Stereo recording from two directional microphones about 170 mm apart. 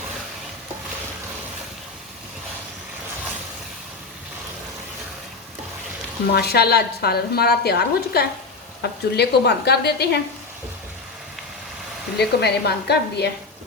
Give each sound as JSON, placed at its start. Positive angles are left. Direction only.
{"t": 6.3, "sound": "a woman's voice", "side_deg": 70}
{"t": 12.1, "sound": "a woman's voice", "side_deg": 75}